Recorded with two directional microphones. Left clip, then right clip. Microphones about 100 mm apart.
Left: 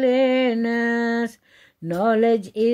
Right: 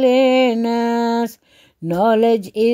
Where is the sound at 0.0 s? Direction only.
35° right (ahead or behind).